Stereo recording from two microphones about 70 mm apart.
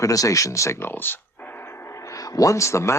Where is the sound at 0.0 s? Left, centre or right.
Left.